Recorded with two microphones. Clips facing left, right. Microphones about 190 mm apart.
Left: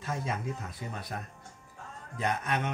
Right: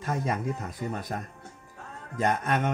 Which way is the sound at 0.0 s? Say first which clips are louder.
Right 5 dB; 55° right (ahead or behind).